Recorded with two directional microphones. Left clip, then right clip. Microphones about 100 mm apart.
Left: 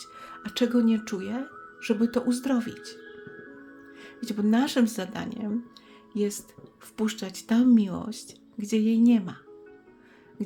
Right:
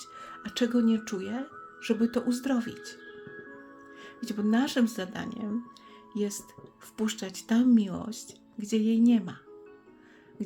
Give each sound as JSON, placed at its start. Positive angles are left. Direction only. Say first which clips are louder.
{"t": 0.0, "sound": "speech", "louder": "left 1 dB", "side_deg": 15}